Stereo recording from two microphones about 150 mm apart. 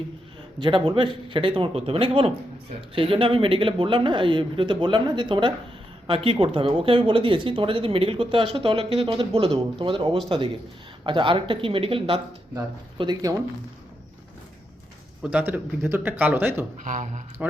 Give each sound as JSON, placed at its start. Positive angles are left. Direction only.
{"t": 0.6, "sound": "speech", "side_deg": -30}
{"t": 12.5, "sound": "speech", "side_deg": -25}
{"t": 15.2, "sound": "speech", "side_deg": -10}
{"t": 16.8, "sound": "speech", "side_deg": -55}